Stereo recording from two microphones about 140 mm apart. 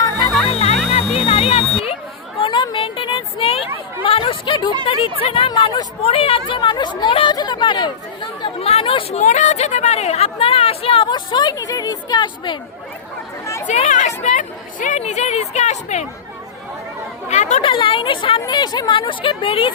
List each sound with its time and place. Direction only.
0.4 s music: 45° left (ahead or behind)
2.4 s a sound: 35° left (ahead or behind)
5.2 s speech: 40° left (ahead or behind)
13.4 s chatter: 20° left (ahead or behind)
13.7 s speech: 60° left (ahead or behind)
17.2 s speech: 55° left (ahead or behind)
17.6 s speech: 35° left (ahead or behind)